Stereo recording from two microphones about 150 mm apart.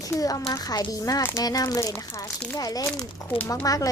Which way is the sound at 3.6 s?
25° left (ahead or behind).